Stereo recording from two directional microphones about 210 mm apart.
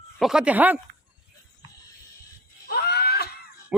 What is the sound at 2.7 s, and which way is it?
Wheeze, 50° left (ahead or behind).